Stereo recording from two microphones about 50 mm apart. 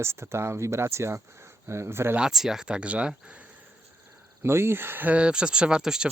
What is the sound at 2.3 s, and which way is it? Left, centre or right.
Speech, centre.